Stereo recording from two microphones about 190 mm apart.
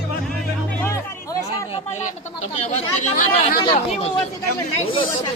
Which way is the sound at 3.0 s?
45° left (ahead or behind).